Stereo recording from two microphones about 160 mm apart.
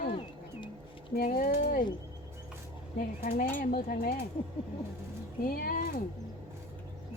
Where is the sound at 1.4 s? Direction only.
65° left (ahead or behind).